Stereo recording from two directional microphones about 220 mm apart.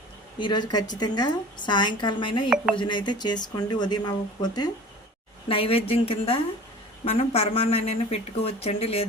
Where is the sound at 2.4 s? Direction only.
5° right (ahead or behind).